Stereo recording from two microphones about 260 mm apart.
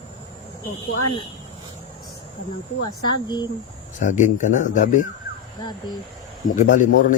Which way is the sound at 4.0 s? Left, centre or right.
Left.